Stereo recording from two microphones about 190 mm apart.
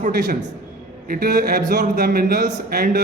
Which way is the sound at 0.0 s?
45° right (ahead or behind).